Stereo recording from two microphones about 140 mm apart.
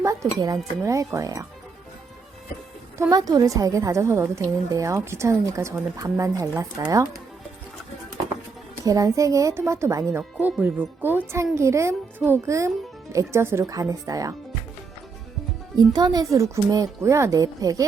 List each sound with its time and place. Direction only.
0.0 s a woman's voice: 20° right (ahead or behind)
3.1 s a woman's voice: 25° right (ahead or behind)
8.8 s a woman's voice: 25° right (ahead or behind)
15.8 s a woman's voice: 30° right (ahead or behind)